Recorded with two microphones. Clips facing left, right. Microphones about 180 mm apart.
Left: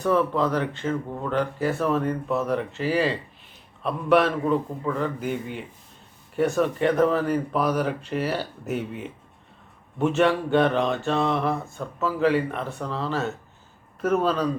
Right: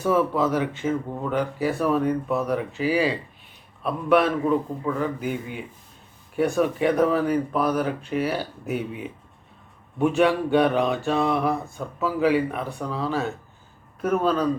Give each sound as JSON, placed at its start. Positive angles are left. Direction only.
{"t": 0.0, "sound": "speech", "side_deg": -5}